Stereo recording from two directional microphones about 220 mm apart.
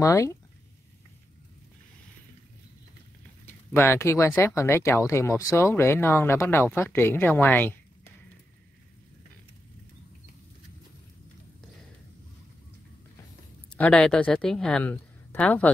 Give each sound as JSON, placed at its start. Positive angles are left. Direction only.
{"t": 0.0, "sound": "speech", "side_deg": 15}
{"t": 3.4, "sound": "speech", "side_deg": 10}
{"t": 13.7, "sound": "speech", "side_deg": 5}